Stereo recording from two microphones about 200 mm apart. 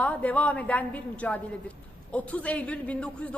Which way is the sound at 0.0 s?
5° left (ahead or behind).